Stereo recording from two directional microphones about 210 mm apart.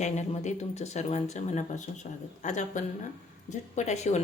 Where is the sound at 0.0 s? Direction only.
35° left (ahead or behind).